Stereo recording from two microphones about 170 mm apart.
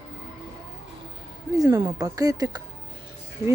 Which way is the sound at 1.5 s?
20° right (ahead or behind).